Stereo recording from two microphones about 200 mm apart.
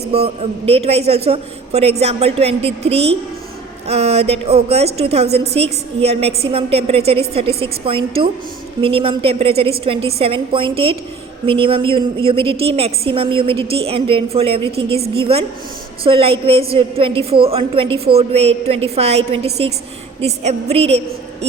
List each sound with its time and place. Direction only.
0.6 s a woman's voice: 30° right (ahead or behind)